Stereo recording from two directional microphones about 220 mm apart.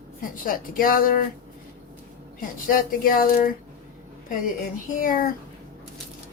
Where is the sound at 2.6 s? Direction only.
40° left (ahead or behind).